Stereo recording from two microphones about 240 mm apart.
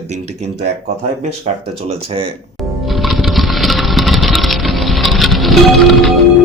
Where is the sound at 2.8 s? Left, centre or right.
Centre.